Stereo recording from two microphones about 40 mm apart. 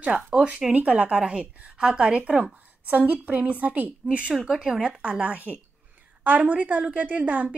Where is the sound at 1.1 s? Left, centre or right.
Right.